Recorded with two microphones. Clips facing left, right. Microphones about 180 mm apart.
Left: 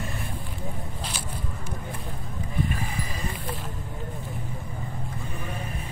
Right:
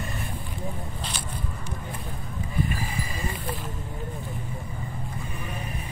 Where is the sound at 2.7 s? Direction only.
5° right (ahead or behind).